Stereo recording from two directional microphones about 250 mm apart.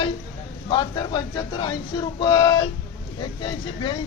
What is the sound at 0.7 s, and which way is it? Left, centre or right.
Speech, centre.